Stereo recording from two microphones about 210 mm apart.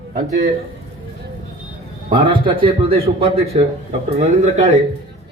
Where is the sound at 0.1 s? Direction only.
40° right (ahead or behind).